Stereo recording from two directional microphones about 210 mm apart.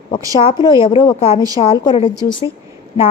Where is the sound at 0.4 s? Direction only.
25° left (ahead or behind).